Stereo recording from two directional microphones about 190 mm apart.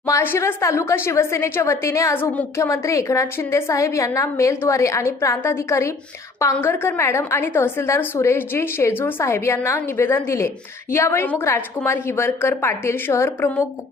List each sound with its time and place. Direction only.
0.0 s a woman's voice: 15° left (ahead or behind)